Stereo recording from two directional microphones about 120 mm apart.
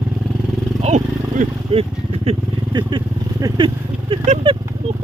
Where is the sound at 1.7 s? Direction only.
55° right (ahead or behind).